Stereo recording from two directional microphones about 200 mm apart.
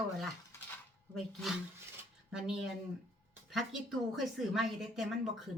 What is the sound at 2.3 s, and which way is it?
A woman's voice, 5° right (ahead or behind).